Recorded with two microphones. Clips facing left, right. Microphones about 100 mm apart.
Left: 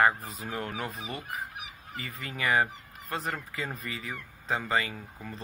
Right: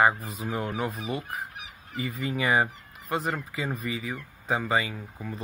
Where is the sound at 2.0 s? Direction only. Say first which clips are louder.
Right 4 dB; 15° right (ahead or behind).